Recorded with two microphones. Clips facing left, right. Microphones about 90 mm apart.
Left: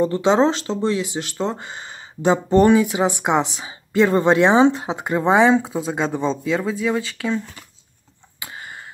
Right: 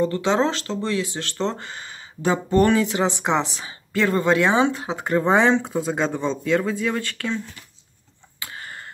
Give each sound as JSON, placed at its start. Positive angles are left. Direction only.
{"t": 0.0, "sound": "speech", "side_deg": 20}
{"t": 2.7, "sound": "speech", "side_deg": 10}
{"t": 8.4, "sound": "a sound", "side_deg": 15}